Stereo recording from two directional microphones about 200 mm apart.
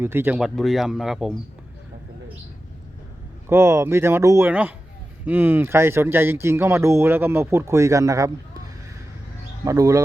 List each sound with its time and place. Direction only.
0.0 s speech: 10° right (ahead or behind)
3.5 s speech: 15° right (ahead or behind)
9.6 s speech: 15° right (ahead or behind)